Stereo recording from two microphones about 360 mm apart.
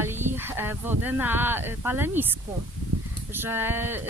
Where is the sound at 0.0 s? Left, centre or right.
Centre.